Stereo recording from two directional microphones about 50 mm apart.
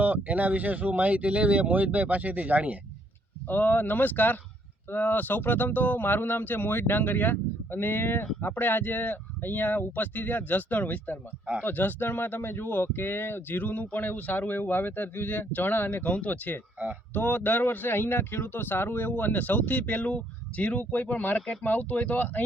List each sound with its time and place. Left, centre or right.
0.0 s speech: right
3.4 s speech: left
16.0 s speech: left